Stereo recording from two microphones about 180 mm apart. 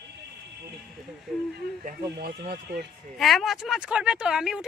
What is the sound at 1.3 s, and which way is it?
Speech, centre (ahead or behind).